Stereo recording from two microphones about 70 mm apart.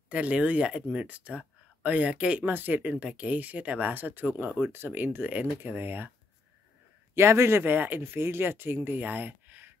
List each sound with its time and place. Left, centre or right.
0.1 s speech: centre
7.2 s speech: right